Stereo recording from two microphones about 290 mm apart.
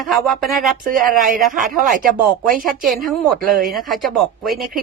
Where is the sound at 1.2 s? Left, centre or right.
Right.